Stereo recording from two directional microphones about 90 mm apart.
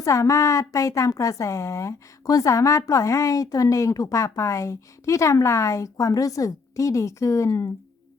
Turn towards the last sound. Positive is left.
turn(degrees=35)  # may be behind; listen again after turning